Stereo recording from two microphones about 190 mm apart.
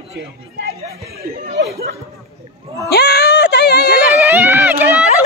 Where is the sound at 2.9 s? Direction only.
55° left (ahead or behind).